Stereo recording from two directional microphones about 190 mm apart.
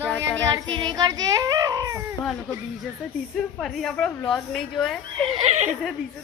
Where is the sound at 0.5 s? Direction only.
20° right (ahead or behind).